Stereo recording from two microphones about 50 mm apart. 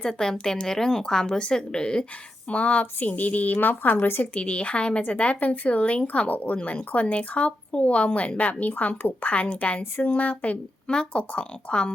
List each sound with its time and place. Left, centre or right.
0.1 s a woman's voice: centre
2.5 s a woman's voice: left
4.4 s speech: left